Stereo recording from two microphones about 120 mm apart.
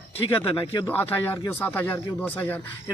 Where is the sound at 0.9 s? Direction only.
15° left (ahead or behind).